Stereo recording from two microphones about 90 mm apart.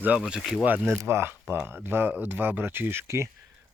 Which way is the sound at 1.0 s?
30° right (ahead or behind).